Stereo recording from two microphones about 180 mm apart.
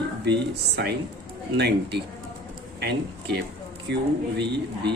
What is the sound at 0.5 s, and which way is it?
Speech, 65° right (ahead or behind).